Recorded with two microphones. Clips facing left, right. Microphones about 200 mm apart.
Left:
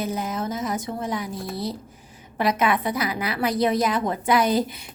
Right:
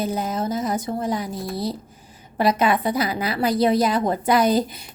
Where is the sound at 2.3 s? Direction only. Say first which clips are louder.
Right 3 dB; 35° right (ahead or behind).